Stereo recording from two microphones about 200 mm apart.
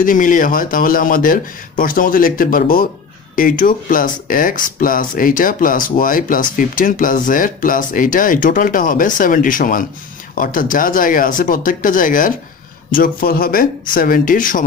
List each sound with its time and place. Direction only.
0.0 s speech: 40° left (ahead or behind)